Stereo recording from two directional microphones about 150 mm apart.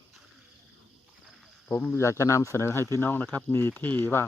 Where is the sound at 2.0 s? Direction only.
20° left (ahead or behind).